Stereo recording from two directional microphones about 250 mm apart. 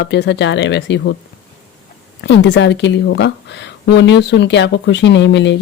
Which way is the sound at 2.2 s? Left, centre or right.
Left.